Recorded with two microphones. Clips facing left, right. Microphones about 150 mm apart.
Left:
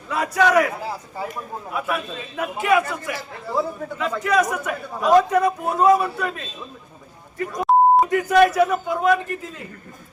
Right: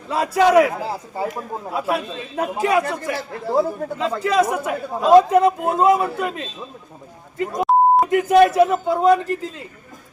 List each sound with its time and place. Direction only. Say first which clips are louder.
0.1 s a man's voice: right 3 dB; 25° right (ahead or behind)
3.4 s a man's voice: right 5 dB; 45° right (ahead or behind)
3.9 s a man's voice: right 1 dB; 30° right (ahead or behind)
7.6 s beep: even; centre (ahead or behind)
8.1 s a man's voice: right 3 dB; 25° right (ahead or behind)